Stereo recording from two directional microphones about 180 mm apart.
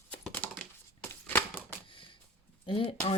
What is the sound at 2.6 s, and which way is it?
Speech, 30° left (ahead or behind).